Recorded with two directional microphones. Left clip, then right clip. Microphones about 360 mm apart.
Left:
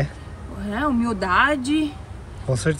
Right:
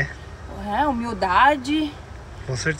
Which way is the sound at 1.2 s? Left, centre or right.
Right.